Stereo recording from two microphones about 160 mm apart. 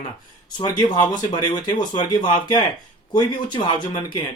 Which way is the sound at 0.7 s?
25° left (ahead or behind).